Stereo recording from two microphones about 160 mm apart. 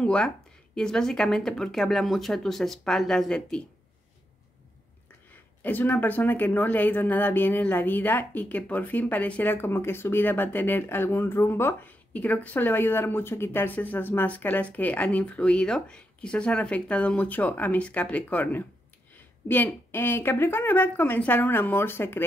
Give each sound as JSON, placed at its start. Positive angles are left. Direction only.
{"t": 0.0, "sound": "speech", "side_deg": 5}
{"t": 5.6, "sound": "speech", "side_deg": 10}